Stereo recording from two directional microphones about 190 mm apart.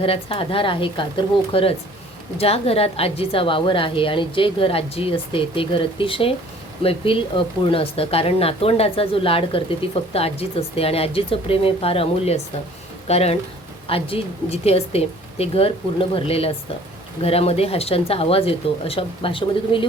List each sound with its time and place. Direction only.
0.0 s a woman's voice: 30° left (ahead or behind)